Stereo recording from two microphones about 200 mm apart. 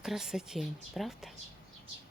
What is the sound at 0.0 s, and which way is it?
A woman's voice, 5° right (ahead or behind).